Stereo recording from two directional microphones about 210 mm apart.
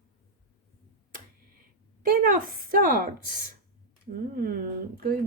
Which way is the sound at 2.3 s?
40° right (ahead or behind).